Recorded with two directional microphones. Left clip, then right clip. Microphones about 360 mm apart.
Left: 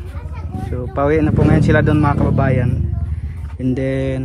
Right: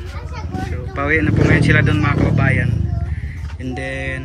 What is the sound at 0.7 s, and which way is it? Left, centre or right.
Speech, centre.